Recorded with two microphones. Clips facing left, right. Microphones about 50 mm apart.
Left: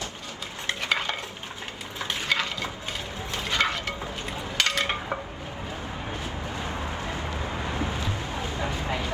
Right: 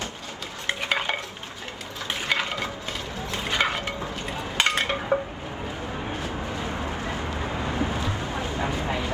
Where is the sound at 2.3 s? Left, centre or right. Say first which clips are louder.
Right 2 dB; right.